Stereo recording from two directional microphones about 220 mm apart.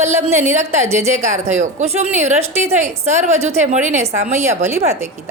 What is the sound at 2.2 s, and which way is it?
Speech, 10° right (ahead or behind).